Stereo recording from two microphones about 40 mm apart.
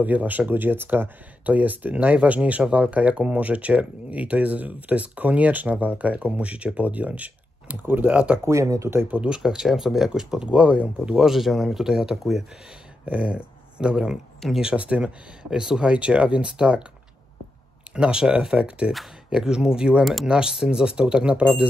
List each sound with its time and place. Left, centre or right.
0.0 s speech: right
1.4 s speech: right
7.7 s speech: right
8.1 s speech: right
8.9 s speech: centre
10.4 s speech: right
11.1 s speech: centre
13.0 s speech: right
13.3 s speech: right
15.5 s speech: centre
15.8 s speech: right
17.9 s speech: right